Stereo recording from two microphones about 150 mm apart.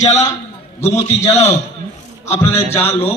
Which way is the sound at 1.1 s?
15° left (ahead or behind).